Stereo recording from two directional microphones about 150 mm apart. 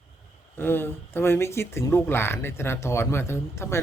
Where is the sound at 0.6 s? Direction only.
15° left (ahead or behind).